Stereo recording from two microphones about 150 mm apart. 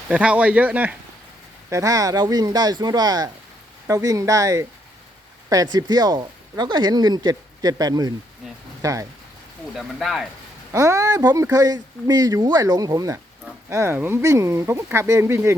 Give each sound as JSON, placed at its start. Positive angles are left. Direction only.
{"t": 0.1, "sound": "speech", "side_deg": -10}
{"t": 1.7, "sound": "speech", "side_deg": -20}
{"t": 5.7, "sound": "speech", "side_deg": -25}
{"t": 9.7, "sound": "speech", "side_deg": 0}
{"t": 10.7, "sound": "speech", "side_deg": -20}